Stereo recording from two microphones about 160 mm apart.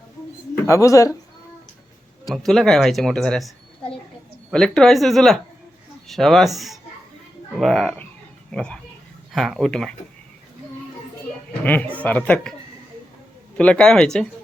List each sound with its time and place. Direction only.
0.7 s speech: 20° left (ahead or behind)
2.3 s a woman's voice: centre (ahead or behind)
11.6 s speech: 10° left (ahead or behind)
13.6 s a woman's voice: 5° left (ahead or behind)